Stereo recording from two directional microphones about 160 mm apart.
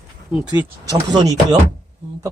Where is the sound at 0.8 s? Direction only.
25° right (ahead or behind).